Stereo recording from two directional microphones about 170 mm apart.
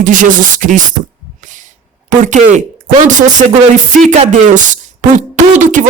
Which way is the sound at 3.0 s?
50° right (ahead or behind).